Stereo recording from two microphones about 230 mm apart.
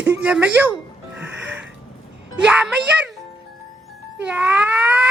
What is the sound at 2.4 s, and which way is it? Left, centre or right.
Speech, centre.